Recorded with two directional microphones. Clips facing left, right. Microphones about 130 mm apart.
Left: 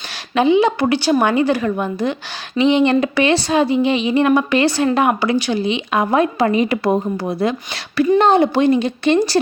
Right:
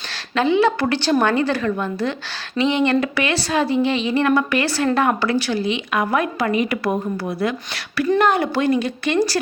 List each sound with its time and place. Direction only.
0.3 s a woman's voice: 15° left (ahead or behind)